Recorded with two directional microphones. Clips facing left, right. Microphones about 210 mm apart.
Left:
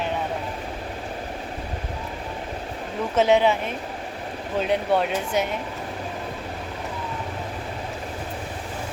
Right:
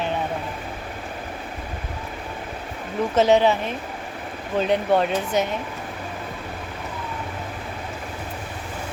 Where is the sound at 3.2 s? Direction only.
40° right (ahead or behind).